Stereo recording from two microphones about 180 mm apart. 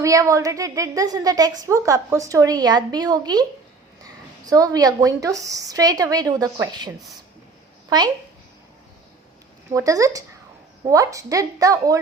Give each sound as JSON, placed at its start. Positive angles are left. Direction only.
{"t": 0.0, "sound": "a woman's voice", "side_deg": -15}
{"t": 9.7, "sound": "a woman's voice", "side_deg": -20}